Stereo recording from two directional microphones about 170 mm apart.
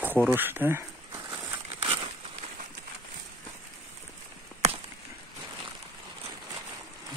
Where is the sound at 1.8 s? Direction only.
30° right (ahead or behind).